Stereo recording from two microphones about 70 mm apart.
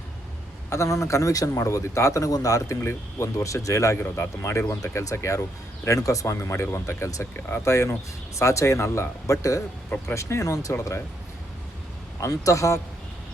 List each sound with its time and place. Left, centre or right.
0.7 s speech: left
4.0 s speech: left
4.8 s speech: left
5.1 s speech: left
12.2 s speech: left